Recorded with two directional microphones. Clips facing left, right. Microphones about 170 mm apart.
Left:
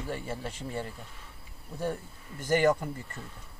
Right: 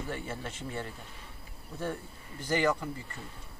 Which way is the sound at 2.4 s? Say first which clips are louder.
Left 4 dB; 45° left (ahead or behind).